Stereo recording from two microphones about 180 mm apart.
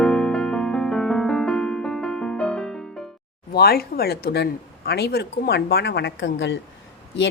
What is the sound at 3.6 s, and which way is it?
Speech, 60° left (ahead or behind).